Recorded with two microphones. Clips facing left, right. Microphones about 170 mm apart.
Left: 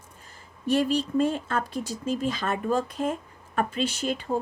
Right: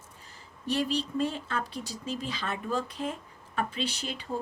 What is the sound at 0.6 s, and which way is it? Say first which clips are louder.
Speech: left 6 dB; 50° left (ahead or behind).